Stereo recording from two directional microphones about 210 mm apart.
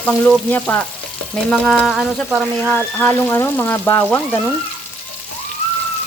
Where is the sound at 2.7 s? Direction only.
10° left (ahead or behind).